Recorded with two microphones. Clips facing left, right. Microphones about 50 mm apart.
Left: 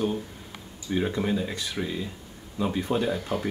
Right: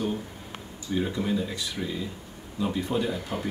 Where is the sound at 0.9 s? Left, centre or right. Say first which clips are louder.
Left 1 dB; left.